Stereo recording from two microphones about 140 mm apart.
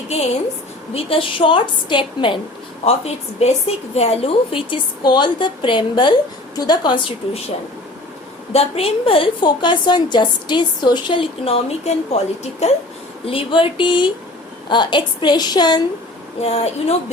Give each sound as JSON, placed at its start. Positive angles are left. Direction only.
{"t": 0.9, "sound": "a woman's voice", "side_deg": 40}
{"t": 2.8, "sound": "a woman's voice", "side_deg": 45}
{"t": 8.5, "sound": "a woman's voice", "side_deg": 45}
{"t": 16.4, "sound": "speech", "side_deg": 45}